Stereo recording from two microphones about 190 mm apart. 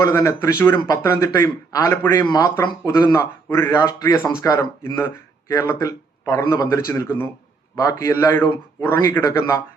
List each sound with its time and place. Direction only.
0.0 s a man's voice: 15° left (ahead or behind)